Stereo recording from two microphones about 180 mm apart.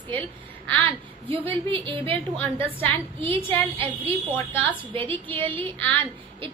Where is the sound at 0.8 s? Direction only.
30° right (ahead or behind).